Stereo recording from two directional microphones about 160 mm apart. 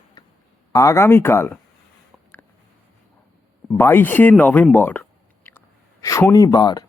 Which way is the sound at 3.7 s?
15° left (ahead or behind).